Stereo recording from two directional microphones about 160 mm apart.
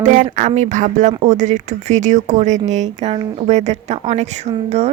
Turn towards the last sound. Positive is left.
turn(degrees=-40)  # may be behind; listen again after turning